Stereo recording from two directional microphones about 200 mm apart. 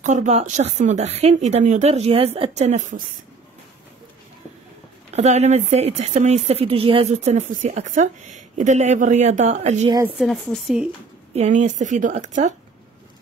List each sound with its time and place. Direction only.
0.0 s speech: 35° right (ahead or behind)
5.1 s speech: 35° right (ahead or behind)
10.0 s speech: centre (ahead or behind)
11.3 s speech: 35° right (ahead or behind)